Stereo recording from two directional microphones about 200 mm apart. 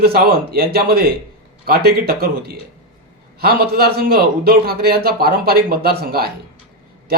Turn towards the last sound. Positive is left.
turn(degrees=-50)  # may be behind; listen again after turning